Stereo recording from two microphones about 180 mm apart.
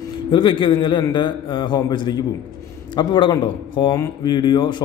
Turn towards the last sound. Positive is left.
turn(degrees=25)  # may be behind; listen again after turning